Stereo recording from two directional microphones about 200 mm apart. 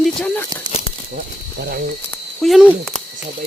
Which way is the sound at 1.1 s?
50° right (ahead or behind).